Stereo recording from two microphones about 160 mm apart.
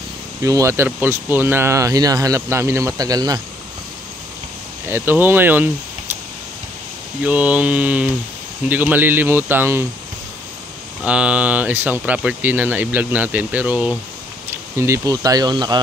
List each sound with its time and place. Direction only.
0.4 s speech: 20° right (ahead or behind)
4.8 s speech: 15° right (ahead or behind)
7.2 s speech: 10° right (ahead or behind)
11.1 s speech: 5° right (ahead or behind)
14.8 s speech: 20° right (ahead or behind)